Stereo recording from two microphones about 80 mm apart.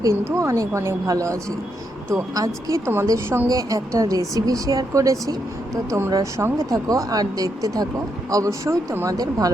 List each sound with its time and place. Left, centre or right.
0.0 s a woman's voice: right
3.5 s a woman's voice: right
9.0 s speech: right